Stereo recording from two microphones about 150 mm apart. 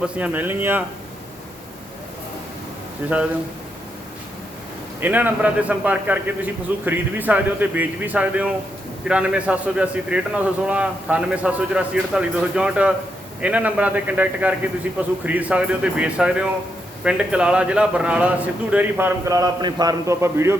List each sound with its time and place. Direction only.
0.0 s a man's voice: 10° right (ahead or behind)
3.0 s a man's voice: 15° right (ahead or behind)
4.9 s a man's voice: 10° right (ahead or behind)